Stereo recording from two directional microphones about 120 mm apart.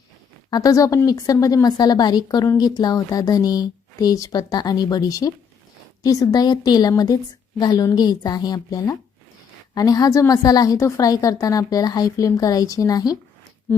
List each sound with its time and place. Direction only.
0.5 s a woman's voice: 30° left (ahead or behind)